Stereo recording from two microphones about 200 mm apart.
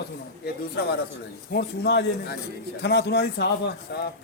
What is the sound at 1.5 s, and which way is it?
Speech, 55° left (ahead or behind).